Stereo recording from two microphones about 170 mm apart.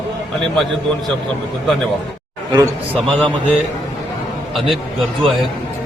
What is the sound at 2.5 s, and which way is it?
Speech, 25° right (ahead or behind).